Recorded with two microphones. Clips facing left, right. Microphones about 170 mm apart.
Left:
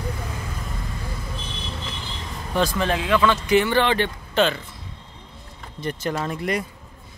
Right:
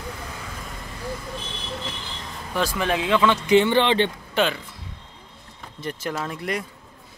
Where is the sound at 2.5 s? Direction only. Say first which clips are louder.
Left 2 dB; 5° right (ahead or behind).